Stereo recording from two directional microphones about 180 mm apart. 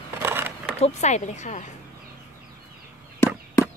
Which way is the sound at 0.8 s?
40° left (ahead or behind).